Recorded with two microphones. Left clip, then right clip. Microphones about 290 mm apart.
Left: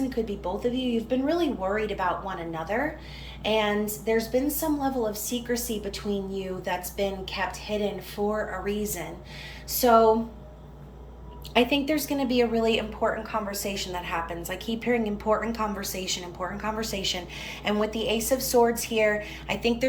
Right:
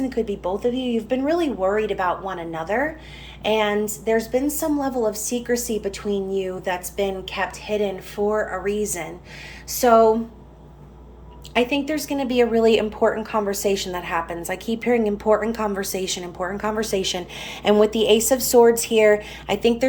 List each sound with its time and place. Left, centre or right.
0.0 s a woman's voice: centre
11.5 s a woman's voice: centre